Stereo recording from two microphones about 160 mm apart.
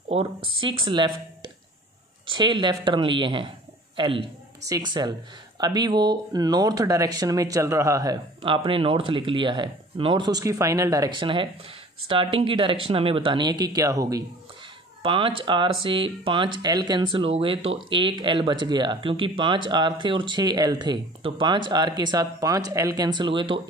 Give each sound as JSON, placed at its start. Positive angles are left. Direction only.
{"t": 0.1, "sound": "speech", "side_deg": -35}
{"t": 2.2, "sound": "speech", "side_deg": -30}
{"t": 8.4, "sound": "speech", "side_deg": -35}
{"t": 15.0, "sound": "speech", "side_deg": -30}